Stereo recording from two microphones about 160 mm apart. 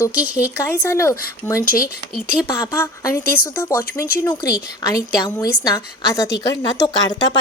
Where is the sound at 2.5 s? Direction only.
15° left (ahead or behind).